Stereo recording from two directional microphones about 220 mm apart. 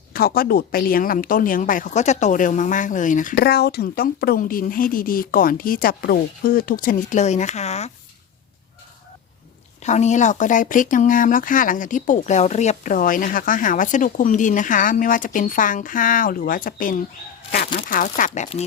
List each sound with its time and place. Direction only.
0.1 s speech: 45° left (ahead or behind)
9.8 s speech: 30° left (ahead or behind)